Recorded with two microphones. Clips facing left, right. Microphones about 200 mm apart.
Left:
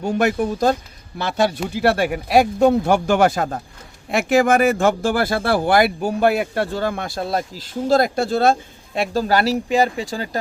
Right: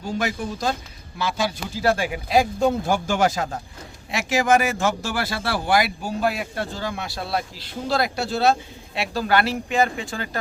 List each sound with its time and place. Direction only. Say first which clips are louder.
0.0 s speech: left 7 dB; 60° left (ahead or behind); by 10.2 s 35° left (ahead or behind)